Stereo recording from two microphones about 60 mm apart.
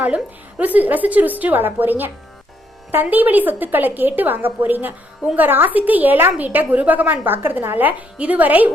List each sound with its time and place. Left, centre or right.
0.6 s a woman's voice: right